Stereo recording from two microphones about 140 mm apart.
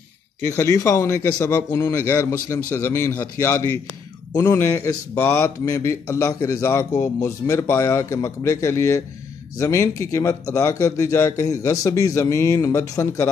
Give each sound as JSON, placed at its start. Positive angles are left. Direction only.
{"t": 0.4, "sound": "a man's voice", "side_deg": 20}
{"t": 1.7, "sound": "a man's voice", "side_deg": 30}